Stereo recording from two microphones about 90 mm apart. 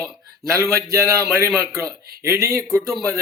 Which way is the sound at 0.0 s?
35° right (ahead or behind).